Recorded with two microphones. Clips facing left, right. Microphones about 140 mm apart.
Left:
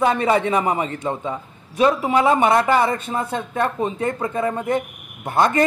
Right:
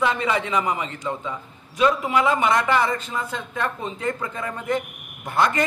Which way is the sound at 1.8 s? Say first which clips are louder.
Left 3 dB; 30° left (ahead or behind).